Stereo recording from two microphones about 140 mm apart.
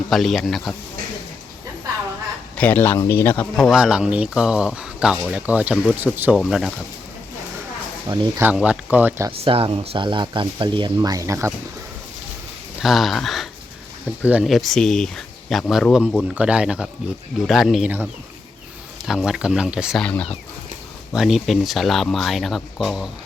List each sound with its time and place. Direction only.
0.1 s speech: centre (ahead or behind)
2.6 s speech: 15° left (ahead or behind); by 6.4 s 10° right (ahead or behind)
6.4 s speech: centre (ahead or behind)
8.0 s speech: 30° right (ahead or behind)
8.5 s speech: 5° right (ahead or behind)
9.4 s speech: 40° right (ahead or behind); by 11.5 s 20° right (ahead or behind)
12.8 s speech: centre (ahead or behind)
14.2 s speech: 10° right (ahead or behind)
14.4 s speech: centre (ahead or behind)
20.0 s speech: 10° left (ahead or behind)
21.1 s speech: centre (ahead or behind)